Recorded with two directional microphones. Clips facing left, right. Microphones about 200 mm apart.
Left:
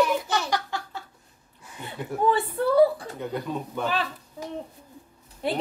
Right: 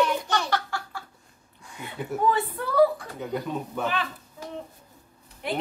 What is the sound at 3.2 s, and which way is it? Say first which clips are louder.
Speech: right 1 dB; centre (ahead or behind).